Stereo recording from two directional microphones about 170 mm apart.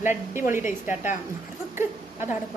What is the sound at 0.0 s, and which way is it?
Speech, 15° right (ahead or behind).